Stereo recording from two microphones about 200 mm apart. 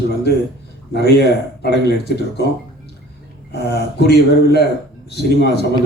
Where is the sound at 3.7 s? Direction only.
55° left (ahead or behind).